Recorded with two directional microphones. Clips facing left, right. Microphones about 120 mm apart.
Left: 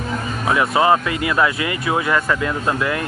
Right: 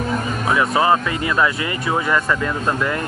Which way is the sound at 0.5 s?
20° left (ahead or behind).